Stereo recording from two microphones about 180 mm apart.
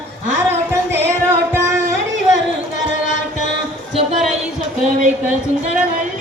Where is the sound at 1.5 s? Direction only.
15° right (ahead or behind).